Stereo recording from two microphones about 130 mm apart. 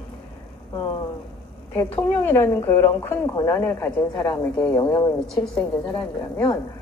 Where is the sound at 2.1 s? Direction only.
20° left (ahead or behind).